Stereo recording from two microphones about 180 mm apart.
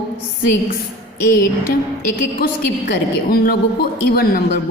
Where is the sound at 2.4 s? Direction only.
55° left (ahead or behind).